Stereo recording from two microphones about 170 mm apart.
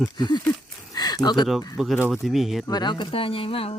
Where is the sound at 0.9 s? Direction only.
20° left (ahead or behind).